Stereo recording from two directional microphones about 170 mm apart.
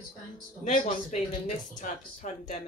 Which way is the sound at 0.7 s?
45° left (ahead or behind).